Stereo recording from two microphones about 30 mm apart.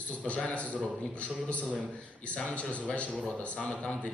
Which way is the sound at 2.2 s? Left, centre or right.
Left.